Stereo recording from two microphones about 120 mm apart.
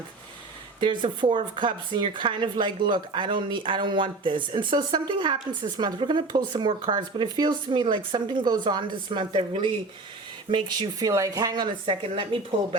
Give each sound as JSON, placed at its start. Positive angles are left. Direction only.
{"t": 0.8, "sound": "speech", "side_deg": -40}